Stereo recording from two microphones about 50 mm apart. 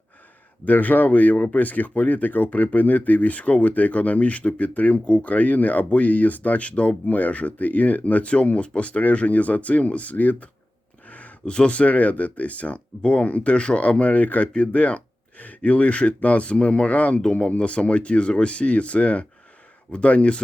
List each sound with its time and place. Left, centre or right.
0.6 s speech: left